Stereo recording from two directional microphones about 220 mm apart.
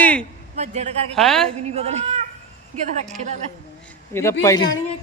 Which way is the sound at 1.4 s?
30° right (ahead or behind).